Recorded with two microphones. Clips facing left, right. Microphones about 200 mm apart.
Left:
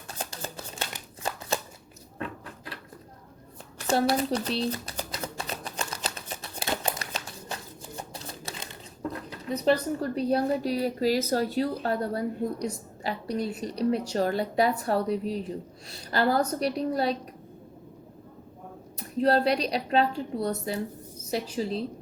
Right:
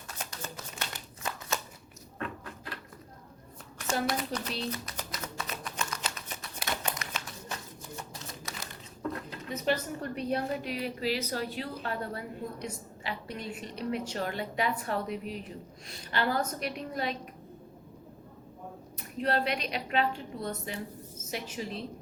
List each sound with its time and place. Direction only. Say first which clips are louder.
0.1 s shuffling cards: left 4 dB; 30° left (ahead or behind)
3.8 s typewriter: left 7 dB; 35° left (ahead or behind)
9.5 s a woman's voice: left 7 dB; 35° left (ahead or behind)
18.9 s a woman's voice: left 7 dB; 35° left (ahead or behind)